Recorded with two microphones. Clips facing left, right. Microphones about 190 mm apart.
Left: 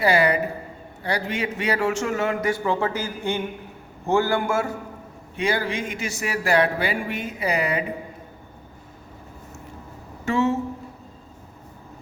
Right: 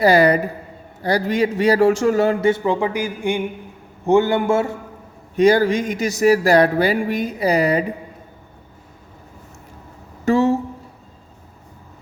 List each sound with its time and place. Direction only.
0.0 s a man's voice: 40° right (ahead or behind)
5.4 s speech: 40° right (ahead or behind)
10.2 s speech: 35° right (ahead or behind)